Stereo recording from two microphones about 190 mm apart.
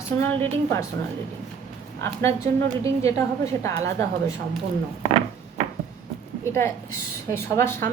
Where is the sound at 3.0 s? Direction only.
15° left (ahead or behind).